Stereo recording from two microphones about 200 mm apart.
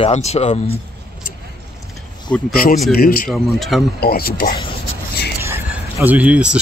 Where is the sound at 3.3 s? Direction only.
Centre (ahead or behind).